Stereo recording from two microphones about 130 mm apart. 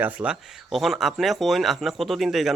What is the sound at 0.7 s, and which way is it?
A man's voice, centre (ahead or behind).